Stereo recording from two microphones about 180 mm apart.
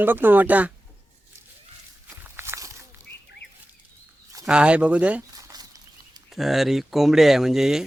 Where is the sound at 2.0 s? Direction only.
10° right (ahead or behind).